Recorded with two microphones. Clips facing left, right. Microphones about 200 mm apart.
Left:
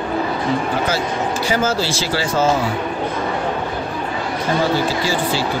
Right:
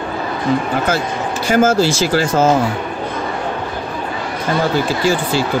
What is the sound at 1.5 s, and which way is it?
Speech, 50° right (ahead or behind).